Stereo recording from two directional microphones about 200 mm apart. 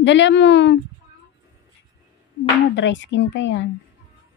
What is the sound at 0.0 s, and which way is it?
Speech, 65° left (ahead or behind).